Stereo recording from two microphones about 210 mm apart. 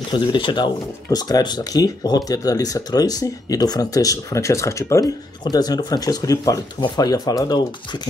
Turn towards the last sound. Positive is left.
turn(degrees=20)  # may be behind; listen again after turning